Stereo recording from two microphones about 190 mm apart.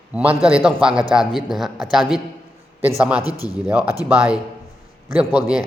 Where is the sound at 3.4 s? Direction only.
20° left (ahead or behind).